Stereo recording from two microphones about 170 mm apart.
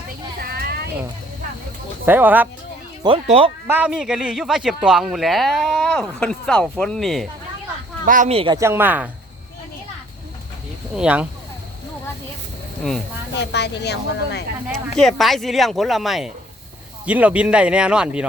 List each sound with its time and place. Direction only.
0.3 s a sound: 60° right (ahead or behind)
2.0 s speech: 10° right (ahead or behind)
3.2 s speech: 35° right (ahead or behind)
3.7 s a man's voice: 10° right (ahead or behind)
8.0 s speech: 50° right (ahead or behind)
8.3 s speech: 35° right (ahead or behind)
8.5 s speech: 15° right (ahead or behind)
10.9 s speech: 5° right (ahead or behind)
13.3 s speech: 85° left
14.9 s a man's voice: centre (ahead or behind)